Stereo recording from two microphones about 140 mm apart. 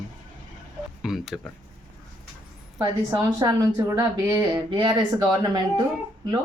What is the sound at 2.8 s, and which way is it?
Speech, 25° right (ahead or behind).